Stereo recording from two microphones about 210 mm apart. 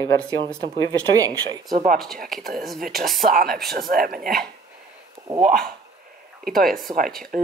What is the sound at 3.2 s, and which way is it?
Speech, 45° right (ahead or behind).